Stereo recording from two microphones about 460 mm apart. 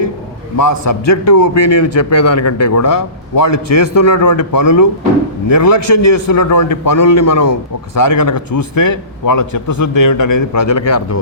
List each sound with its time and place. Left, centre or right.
0.5 s a man's voice: left